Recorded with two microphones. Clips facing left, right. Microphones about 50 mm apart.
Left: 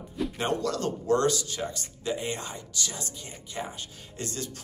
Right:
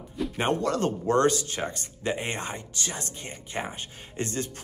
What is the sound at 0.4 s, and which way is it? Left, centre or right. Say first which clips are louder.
Speech: right 4 dB; right.